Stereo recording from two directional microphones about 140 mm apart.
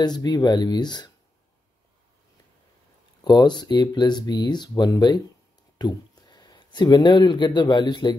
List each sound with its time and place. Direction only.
0.0 s speech: 30° left (ahead or behind)
3.3 s speech: 30° left (ahead or behind)